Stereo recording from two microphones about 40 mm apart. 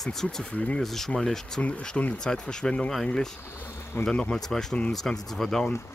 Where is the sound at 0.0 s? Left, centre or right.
Centre.